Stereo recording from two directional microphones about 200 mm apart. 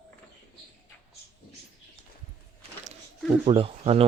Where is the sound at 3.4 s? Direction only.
30° right (ahead or behind).